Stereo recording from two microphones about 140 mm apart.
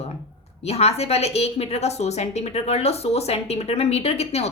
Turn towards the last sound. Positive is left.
turn(degrees=50)  # may be behind; listen again after turning